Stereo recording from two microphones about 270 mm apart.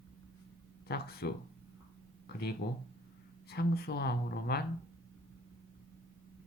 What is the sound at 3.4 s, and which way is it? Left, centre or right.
Speech, left.